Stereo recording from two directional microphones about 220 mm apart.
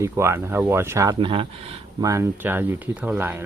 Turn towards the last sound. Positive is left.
turn(degrees=-10)  # may be behind; listen again after turning